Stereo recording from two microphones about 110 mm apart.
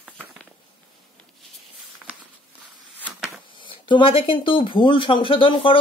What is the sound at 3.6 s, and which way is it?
A man's voice, 50° left (ahead or behind).